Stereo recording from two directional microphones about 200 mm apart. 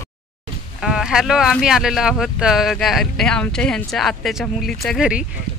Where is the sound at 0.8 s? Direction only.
Centre (ahead or behind).